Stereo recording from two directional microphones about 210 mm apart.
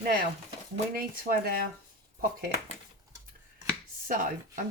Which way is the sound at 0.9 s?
45° right (ahead or behind).